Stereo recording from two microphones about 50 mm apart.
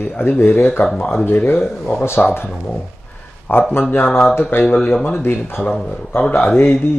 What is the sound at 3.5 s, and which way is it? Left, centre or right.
Speech, left.